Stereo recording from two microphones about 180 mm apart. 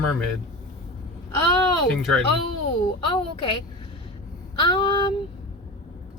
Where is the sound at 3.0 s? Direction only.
30° left (ahead or behind).